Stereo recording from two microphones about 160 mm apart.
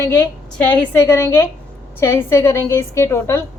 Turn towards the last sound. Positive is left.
turn(degrees=15)  # may be behind; listen again after turning